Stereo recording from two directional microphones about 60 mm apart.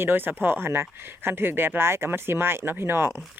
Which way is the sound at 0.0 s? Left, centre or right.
Right.